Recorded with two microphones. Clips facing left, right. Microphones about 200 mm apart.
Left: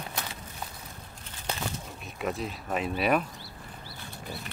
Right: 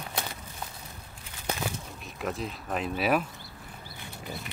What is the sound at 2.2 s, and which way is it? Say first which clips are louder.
Speech: left 1 dB; centre (ahead or behind).